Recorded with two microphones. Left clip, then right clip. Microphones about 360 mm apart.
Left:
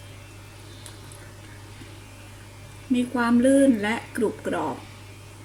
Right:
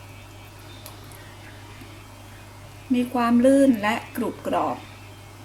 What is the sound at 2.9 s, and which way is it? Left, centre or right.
A woman's voice, right.